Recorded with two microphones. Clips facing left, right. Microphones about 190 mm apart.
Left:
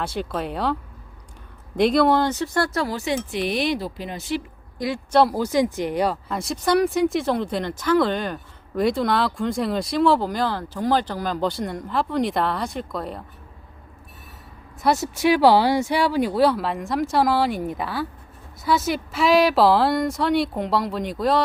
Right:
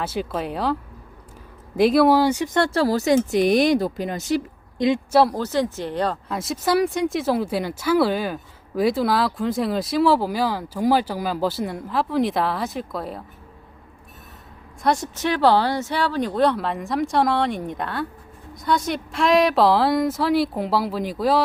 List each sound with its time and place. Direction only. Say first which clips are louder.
0.0 s speech: right 1 dB; 5° right (ahead or behind); by 4.4 s 45° right (ahead or behind)
5.3 s speech: left 2 dB; 10° left (ahead or behind)
6.2 s speech: even; centre (ahead or behind)
14.8 s speech: left 1 dB; 5° left (ahead or behind)